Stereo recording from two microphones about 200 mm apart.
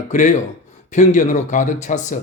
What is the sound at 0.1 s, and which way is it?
A man's voice, 40° left (ahead or behind).